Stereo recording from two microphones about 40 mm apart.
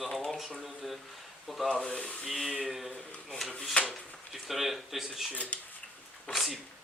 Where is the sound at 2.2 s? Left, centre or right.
Centre.